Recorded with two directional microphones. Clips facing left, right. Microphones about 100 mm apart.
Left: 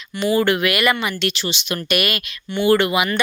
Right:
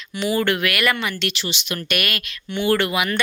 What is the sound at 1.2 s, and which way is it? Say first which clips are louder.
Speech: left 3 dB; 30° left (ahead or behind).